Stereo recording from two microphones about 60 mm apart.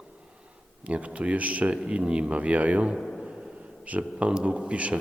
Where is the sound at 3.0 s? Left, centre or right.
Centre.